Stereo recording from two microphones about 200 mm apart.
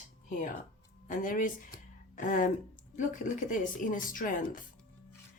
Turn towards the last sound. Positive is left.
turn(degrees=40)  # may be behind; listen again after turning